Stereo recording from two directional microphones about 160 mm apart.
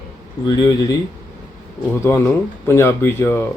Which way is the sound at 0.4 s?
25° left (ahead or behind).